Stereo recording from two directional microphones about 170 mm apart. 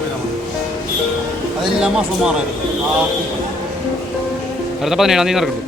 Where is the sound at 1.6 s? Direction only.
5° right (ahead or behind).